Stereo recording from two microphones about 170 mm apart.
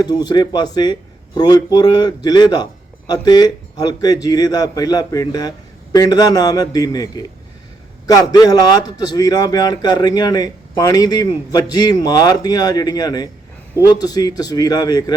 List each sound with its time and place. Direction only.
0.0 s a man's voice: 25° left (ahead or behind)